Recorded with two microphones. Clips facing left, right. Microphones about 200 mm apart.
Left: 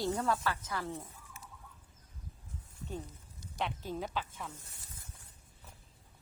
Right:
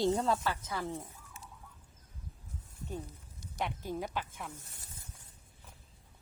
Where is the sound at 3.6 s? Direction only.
10° right (ahead or behind).